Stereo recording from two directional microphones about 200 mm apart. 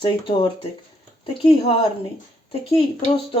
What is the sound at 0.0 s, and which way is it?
Speech, 25° left (ahead or behind).